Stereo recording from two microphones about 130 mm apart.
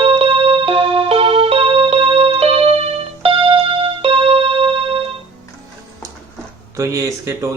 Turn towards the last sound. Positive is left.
turn(degrees=-25)  # may be behind; listen again after turning